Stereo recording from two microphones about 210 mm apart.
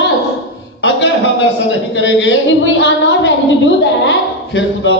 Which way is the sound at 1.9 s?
60° left (ahead or behind).